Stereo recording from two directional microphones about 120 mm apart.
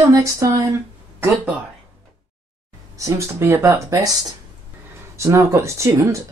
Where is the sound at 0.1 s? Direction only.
30° right (ahead or behind).